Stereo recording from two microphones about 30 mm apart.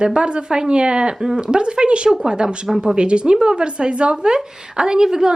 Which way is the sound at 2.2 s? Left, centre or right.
Right.